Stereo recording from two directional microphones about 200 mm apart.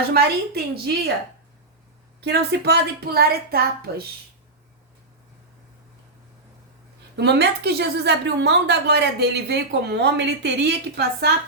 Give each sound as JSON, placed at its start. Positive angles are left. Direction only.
{"t": 0.1, "sound": "a woman's voice", "side_deg": -50}
{"t": 2.2, "sound": "a woman's voice", "side_deg": -55}
{"t": 7.2, "sound": "a woman's voice", "side_deg": -55}